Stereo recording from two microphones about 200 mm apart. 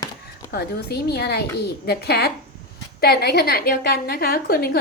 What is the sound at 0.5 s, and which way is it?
A woman's voice, 55° left (ahead or behind).